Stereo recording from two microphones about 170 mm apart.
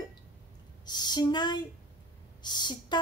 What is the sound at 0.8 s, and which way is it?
A woman's voice, 25° left (ahead or behind).